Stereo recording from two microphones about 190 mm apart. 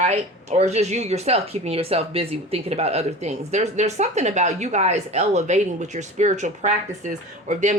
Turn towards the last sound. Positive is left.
turn(degrees=-40)  # may be behind; listen again after turning